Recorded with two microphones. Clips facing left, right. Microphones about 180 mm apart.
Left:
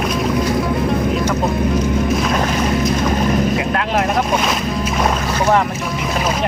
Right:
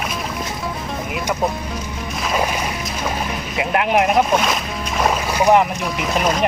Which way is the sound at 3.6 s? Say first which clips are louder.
Right 1 dB; 15° right (ahead or behind).